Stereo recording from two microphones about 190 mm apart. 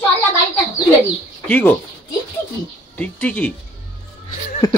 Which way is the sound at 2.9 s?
5° left (ahead or behind).